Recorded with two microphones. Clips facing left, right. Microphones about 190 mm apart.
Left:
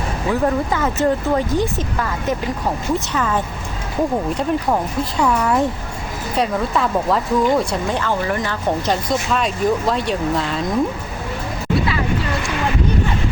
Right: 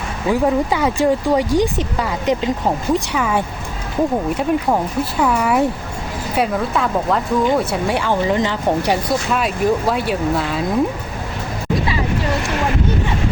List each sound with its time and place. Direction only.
0.3 s speech: 15° right (ahead or behind)